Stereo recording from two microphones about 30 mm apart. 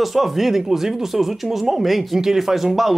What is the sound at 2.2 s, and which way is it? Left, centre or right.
Speech, centre.